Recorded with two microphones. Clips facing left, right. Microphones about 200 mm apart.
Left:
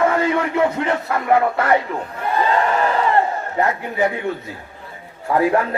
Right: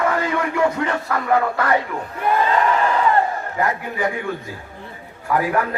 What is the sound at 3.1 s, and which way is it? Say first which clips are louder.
A man's voice: left 1 dB; 25° left (ahead or behind).